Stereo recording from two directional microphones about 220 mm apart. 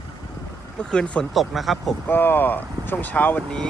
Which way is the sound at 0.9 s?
5° left (ahead or behind).